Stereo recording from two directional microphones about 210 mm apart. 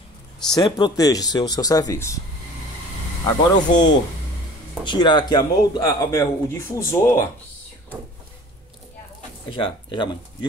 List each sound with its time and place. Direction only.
0.6 s speech: 20° left (ahead or behind)
3.3 s speech: 20° left (ahead or behind)
9.5 s speech: 25° left (ahead or behind)